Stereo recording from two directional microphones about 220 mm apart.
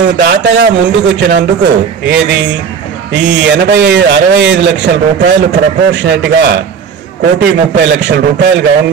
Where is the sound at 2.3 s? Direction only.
50° right (ahead or behind).